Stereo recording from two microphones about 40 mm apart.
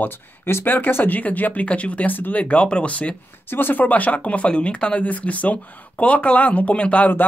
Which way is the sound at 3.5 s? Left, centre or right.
Left.